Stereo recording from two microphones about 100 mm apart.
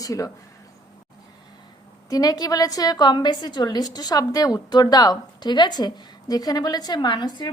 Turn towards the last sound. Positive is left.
turn(degrees=50)  # may be behind; listen again after turning